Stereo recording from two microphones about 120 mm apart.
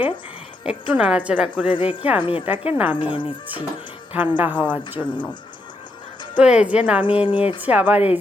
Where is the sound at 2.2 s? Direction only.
45° left (ahead or behind).